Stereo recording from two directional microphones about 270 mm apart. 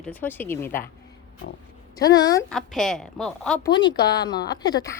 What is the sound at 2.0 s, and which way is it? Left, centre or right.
Speech, centre.